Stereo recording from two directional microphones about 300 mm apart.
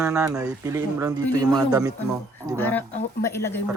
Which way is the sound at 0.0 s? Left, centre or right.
Centre.